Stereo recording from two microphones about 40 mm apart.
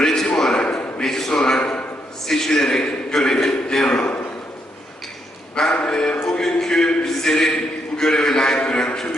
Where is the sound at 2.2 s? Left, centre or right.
Centre.